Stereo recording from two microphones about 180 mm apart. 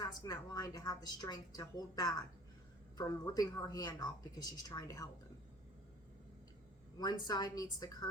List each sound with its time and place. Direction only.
0.0 s a woman's voice: 20° left (ahead or behind)
7.0 s a woman's voice: 25° left (ahead or behind)